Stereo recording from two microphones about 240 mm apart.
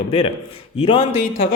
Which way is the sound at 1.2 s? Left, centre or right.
Left.